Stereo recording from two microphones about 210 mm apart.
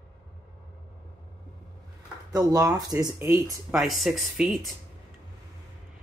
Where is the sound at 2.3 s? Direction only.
15° right (ahead or behind).